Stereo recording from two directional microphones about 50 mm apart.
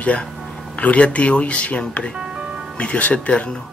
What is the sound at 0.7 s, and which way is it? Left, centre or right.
Speech, left.